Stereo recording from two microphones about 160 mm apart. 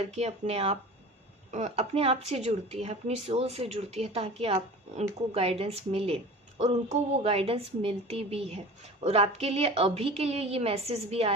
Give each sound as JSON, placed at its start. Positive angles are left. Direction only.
{"t": 0.0, "sound": "a woman's voice", "side_deg": -45}